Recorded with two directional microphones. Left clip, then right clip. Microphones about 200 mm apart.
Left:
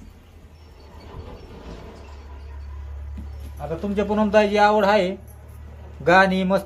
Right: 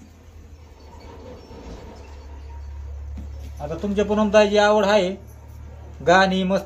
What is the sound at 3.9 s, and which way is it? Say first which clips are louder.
A man's voice: right 2 dB; 10° left (ahead or behind).